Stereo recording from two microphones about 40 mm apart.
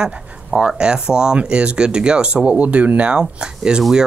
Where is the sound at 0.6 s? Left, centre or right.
Right.